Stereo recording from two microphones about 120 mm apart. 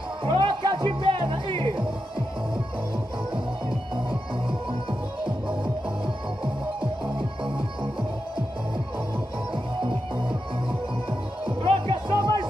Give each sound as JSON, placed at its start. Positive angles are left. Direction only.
{"t": 0.2, "sound": "music", "side_deg": -45}
{"t": 11.4, "sound": "music", "side_deg": -50}